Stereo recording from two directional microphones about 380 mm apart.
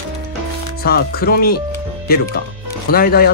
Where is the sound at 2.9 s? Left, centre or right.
Left.